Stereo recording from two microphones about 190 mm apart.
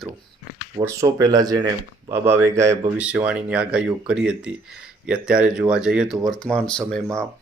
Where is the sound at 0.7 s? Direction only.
20° right (ahead or behind); by 7.0 s 5° left (ahead or behind).